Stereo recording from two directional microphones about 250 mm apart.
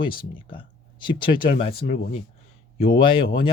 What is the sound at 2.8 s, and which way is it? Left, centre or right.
Speech, centre.